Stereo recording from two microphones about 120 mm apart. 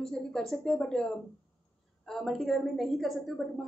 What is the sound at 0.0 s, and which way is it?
A woman's voice, 5° left (ahead or behind).